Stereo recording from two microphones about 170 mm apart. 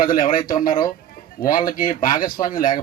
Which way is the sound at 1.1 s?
55° left (ahead or behind).